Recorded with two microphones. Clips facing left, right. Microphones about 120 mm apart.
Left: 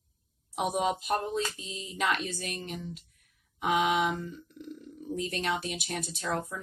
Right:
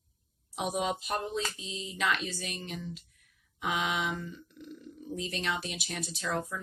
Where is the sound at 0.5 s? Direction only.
45° left (ahead or behind).